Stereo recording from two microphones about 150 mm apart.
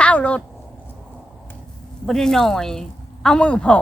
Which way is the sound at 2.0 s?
5° left (ahead or behind).